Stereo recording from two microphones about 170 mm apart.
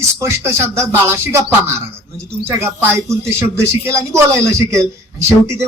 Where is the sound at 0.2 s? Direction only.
15° right (ahead or behind).